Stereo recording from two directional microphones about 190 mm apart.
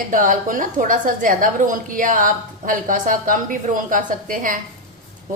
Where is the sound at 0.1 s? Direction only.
45° right (ahead or behind).